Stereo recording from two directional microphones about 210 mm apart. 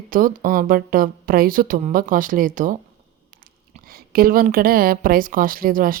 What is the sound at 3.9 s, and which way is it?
A woman's voice, 45° right (ahead or behind).